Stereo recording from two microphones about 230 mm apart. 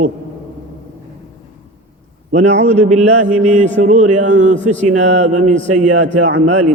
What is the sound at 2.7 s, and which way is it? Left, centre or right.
A man's voice, right.